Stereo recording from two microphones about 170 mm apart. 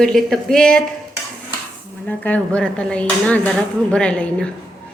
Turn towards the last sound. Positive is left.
turn(degrees=5)  # may be behind; listen again after turning